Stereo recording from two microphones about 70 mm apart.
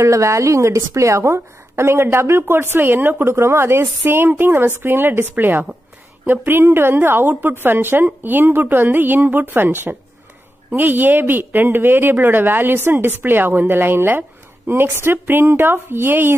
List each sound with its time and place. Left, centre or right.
0.0 s a woman's voice: right